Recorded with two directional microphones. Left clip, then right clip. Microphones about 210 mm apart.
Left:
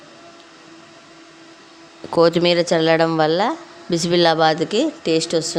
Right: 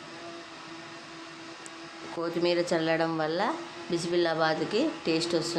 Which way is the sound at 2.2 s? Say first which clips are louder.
Left 13 dB; 40° left (ahead or behind).